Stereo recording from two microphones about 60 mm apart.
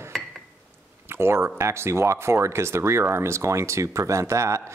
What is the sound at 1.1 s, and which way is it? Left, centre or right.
Speech, right.